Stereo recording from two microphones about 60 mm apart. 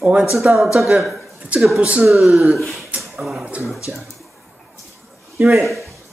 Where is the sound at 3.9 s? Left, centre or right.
Centre.